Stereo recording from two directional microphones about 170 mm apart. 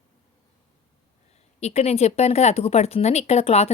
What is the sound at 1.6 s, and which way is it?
Speech, 40° left (ahead or behind).